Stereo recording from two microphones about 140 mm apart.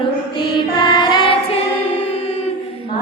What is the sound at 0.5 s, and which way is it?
Music, 30° left (ahead or behind).